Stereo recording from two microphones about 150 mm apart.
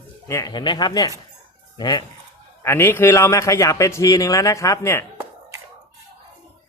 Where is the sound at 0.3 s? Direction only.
25° left (ahead or behind).